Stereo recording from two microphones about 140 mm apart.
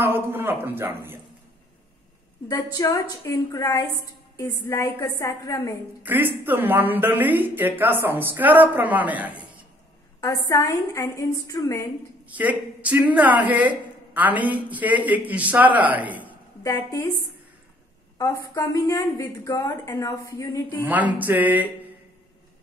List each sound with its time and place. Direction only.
0.0 s speech: 15° right (ahead or behind)
2.5 s a woman's voice: 25° left (ahead or behind)
6.0 s speech: 15° right (ahead or behind)
10.2 s a woman's voice: 25° left (ahead or behind)
12.3 s speech: 10° right (ahead or behind)
16.6 s a woman's voice: 20° left (ahead or behind)
18.1 s a woman's voice: 25° left (ahead or behind)
20.8 s speech: 10° right (ahead or behind)